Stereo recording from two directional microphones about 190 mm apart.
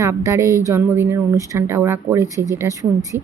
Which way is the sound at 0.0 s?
15° right (ahead or behind).